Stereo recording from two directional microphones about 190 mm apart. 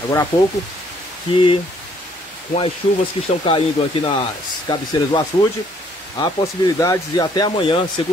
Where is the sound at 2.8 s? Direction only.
30° left (ahead or behind).